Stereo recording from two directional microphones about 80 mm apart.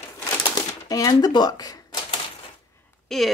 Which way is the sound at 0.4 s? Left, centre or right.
Left.